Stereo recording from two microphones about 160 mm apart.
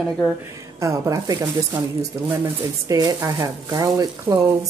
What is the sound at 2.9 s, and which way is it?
A woman's voice, 25° right (ahead or behind).